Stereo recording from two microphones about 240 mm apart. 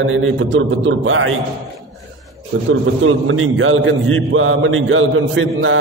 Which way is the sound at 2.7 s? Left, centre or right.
Right.